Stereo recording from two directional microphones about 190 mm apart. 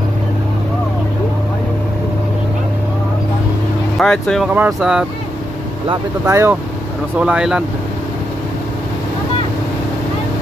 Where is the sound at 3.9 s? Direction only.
Centre (ahead or behind).